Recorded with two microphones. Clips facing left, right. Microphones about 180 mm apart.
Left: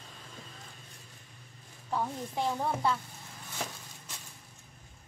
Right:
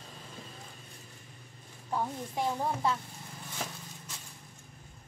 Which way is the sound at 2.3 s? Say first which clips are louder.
Even; 10° right (ahead or behind).